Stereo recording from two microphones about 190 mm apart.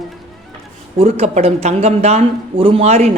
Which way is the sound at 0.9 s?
30° right (ahead or behind).